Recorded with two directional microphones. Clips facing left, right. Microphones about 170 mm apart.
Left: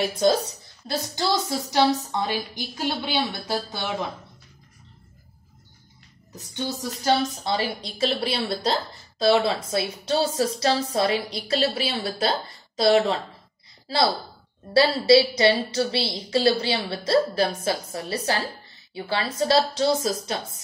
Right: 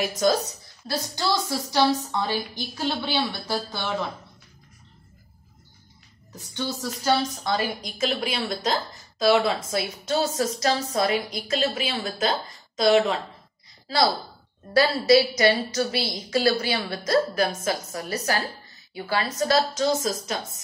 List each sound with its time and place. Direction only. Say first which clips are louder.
0.0 s a woman's voice: left 2 dB; 30° left (ahead or behind)
0.8 s a woman's voice: left 1 dB; 20° left (ahead or behind)
6.3 s a woman's voice: even; 20° left (ahead or behind)
7.4 s a woman's voice: even; 30° left (ahead or behind)